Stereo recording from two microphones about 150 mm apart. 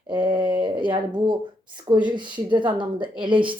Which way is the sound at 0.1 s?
30° right (ahead or behind).